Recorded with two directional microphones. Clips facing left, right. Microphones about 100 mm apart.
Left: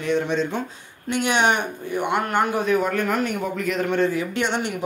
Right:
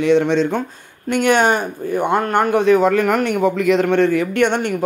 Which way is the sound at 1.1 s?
50° right (ahead or behind).